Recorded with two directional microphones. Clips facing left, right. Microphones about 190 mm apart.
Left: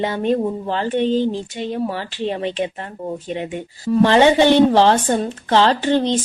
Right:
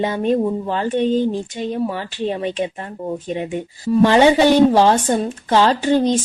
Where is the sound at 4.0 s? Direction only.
15° right (ahead or behind).